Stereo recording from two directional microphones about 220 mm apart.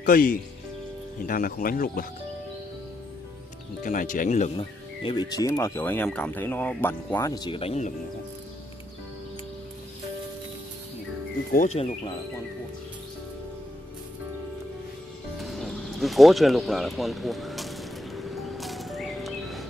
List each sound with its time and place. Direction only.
0.0 s speech: 40° left (ahead or behind)
3.8 s speech: 35° left (ahead or behind)
11.5 s speech: 30° left (ahead or behind)
15.3 s music: centre (ahead or behind)